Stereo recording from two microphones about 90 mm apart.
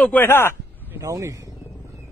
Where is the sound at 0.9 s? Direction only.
35° right (ahead or behind).